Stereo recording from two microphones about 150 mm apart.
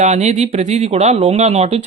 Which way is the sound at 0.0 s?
50° right (ahead or behind).